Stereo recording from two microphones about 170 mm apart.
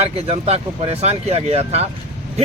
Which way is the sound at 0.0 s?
35° right (ahead or behind).